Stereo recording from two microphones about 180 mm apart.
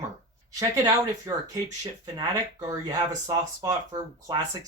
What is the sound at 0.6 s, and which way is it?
Speech, 20° right (ahead or behind).